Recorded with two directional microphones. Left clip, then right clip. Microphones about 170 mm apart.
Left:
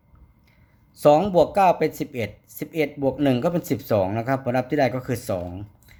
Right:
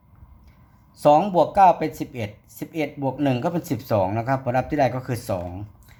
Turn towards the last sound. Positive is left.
turn(degrees=20)  # may be behind; listen again after turning